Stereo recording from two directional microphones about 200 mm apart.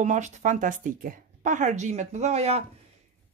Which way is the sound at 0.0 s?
35° right (ahead or behind).